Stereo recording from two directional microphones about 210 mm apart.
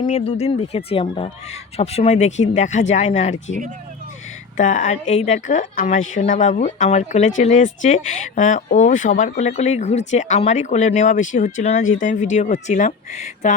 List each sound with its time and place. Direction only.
0.0 s speech: 30° left (ahead or behind)
4.5 s speech: 35° left (ahead or behind)